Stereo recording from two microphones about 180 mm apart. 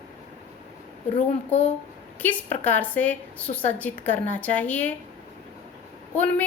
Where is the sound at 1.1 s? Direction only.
35° left (ahead or behind).